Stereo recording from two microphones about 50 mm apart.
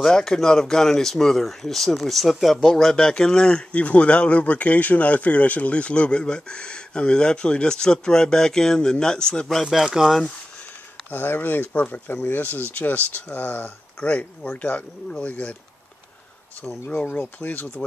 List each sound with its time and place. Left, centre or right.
0.0 s speech: centre
9.5 s speech: centre
11.1 s speech: left
16.9 s speech: left